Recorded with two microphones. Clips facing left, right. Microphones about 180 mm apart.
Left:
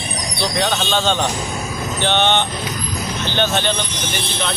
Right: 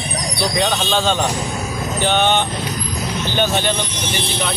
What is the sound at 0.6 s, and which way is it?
Speech, 5° right (ahead or behind).